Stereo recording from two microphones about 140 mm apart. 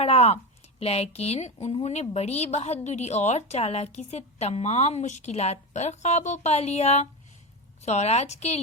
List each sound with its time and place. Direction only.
0.0 s a woman's voice: 45° left (ahead or behind)